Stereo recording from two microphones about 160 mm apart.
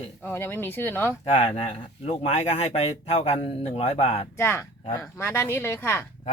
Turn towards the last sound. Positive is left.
turn(degrees=15)  # may be behind; listen again after turning